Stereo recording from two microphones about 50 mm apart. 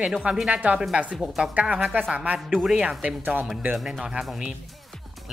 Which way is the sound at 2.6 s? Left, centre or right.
Centre.